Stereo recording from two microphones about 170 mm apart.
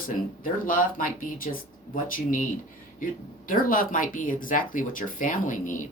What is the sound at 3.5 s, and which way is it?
Speech, 55° left (ahead or behind).